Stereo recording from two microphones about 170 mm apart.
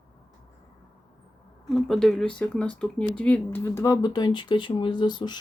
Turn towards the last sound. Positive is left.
turn(degrees=25)  # may be behind; listen again after turning